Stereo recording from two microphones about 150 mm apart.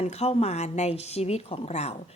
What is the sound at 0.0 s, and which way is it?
A woman's voice, 45° left (ahead or behind).